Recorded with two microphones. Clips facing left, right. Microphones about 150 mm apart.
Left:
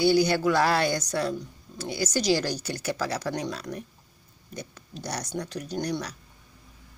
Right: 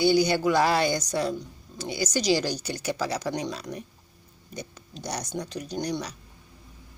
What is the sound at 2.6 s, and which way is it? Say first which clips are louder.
Speech: even; 10° right (ahead or behind).